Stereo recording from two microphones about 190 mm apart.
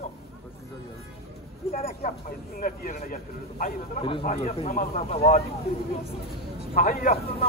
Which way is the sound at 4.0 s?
25° left (ahead or behind).